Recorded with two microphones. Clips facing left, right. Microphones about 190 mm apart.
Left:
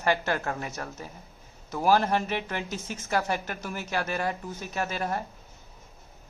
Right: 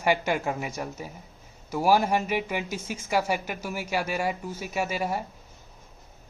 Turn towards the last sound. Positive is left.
turn(degrees=-10)  # may be behind; listen again after turning